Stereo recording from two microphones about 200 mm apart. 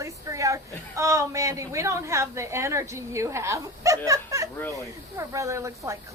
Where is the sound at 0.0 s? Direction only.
15° right (ahead or behind).